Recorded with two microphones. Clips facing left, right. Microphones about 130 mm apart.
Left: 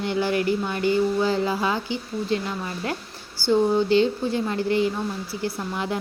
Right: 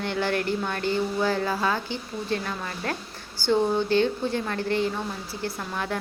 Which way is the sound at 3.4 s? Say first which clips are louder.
Left 2 dB; 20° right (ahead or behind).